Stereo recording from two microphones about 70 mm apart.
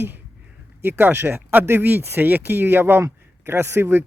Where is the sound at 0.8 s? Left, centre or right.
Right.